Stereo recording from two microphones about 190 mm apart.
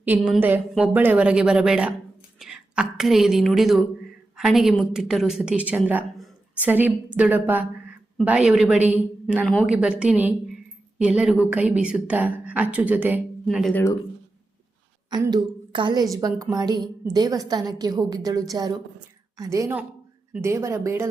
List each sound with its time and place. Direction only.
0.0 s a woman's voice: 5° right (ahead or behind)
15.1 s a woman's voice: 20° right (ahead or behind)